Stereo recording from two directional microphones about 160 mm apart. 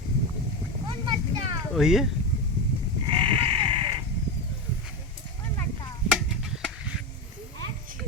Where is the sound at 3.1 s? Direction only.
30° right (ahead or behind).